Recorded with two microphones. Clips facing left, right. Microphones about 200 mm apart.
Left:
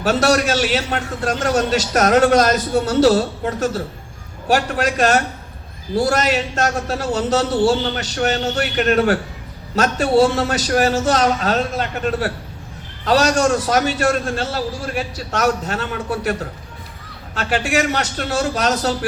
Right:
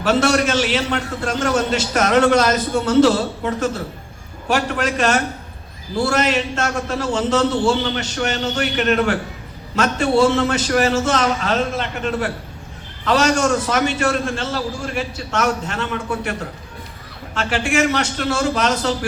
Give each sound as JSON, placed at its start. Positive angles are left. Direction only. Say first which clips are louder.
{"t": 0.0, "sound": "a man's voice", "louder": "even", "side_deg": 40}
{"t": 4.4, "sound": "a man's voice", "louder": "left 2 dB", "side_deg": 40}
{"t": 17.3, "sound": "a man's voice", "louder": "even", "side_deg": 40}